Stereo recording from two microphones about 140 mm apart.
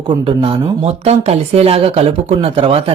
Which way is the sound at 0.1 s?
40° right (ahead or behind).